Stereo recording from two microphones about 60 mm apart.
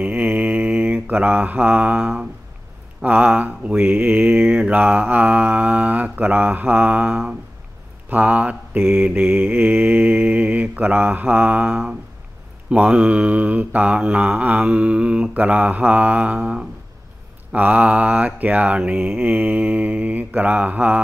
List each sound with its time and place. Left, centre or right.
0.0 s mantra: right
3.0 s speech: right